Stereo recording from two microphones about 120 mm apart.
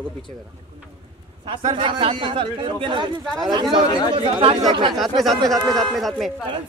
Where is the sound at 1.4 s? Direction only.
45° right (ahead or behind).